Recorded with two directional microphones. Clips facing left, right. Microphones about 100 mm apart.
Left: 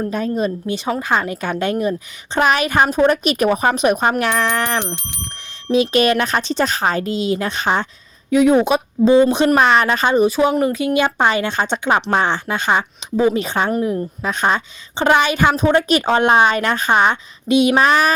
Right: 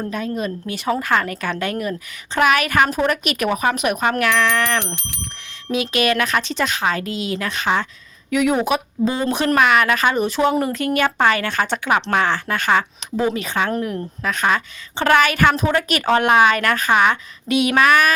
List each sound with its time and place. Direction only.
0.1 s speech: 35° left (ahead or behind)
0.9 s a woman's voice: 20° left (ahead or behind)
10.2 s speech: 15° left (ahead or behind)
10.9 s a woman's voice: 20° left (ahead or behind)
13.4 s a woman's voice: 30° left (ahead or behind)